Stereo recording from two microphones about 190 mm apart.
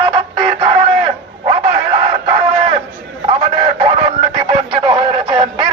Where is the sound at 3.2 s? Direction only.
30° right (ahead or behind).